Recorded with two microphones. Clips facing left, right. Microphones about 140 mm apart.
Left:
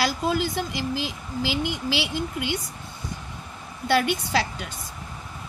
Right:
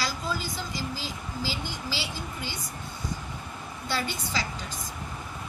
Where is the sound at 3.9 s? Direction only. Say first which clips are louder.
Left 9 dB; 65° left (ahead or behind).